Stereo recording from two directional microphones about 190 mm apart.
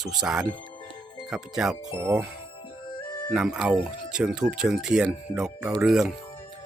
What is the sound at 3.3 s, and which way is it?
Speech, 5° right (ahead or behind).